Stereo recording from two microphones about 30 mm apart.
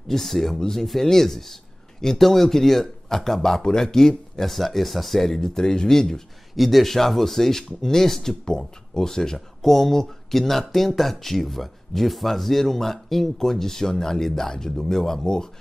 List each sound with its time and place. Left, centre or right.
0.1 s speech: centre
5.3 s speech: left
6.5 s speech: centre
8.5 s speech: left